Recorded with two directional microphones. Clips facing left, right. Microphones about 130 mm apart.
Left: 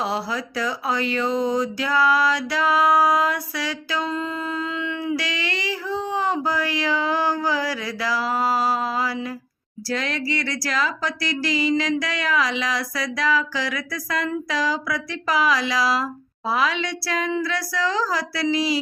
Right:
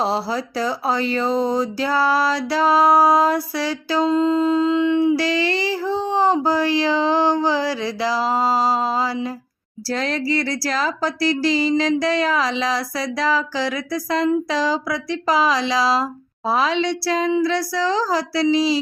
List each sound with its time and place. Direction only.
0.0 s speech: 30° right (ahead or behind)
16.5 s music: 30° right (ahead or behind)